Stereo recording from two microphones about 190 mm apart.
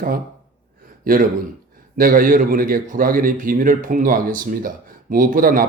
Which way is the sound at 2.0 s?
50° right (ahead or behind).